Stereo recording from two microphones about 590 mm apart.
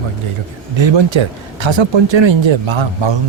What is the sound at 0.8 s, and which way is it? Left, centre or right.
Speech, right.